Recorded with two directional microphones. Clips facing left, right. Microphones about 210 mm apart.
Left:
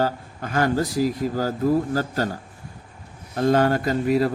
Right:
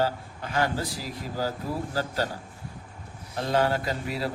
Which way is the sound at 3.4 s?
50° left (ahead or behind).